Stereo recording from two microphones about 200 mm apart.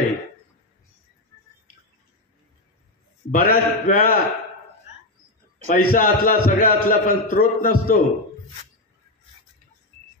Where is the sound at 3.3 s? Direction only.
45° left (ahead or behind).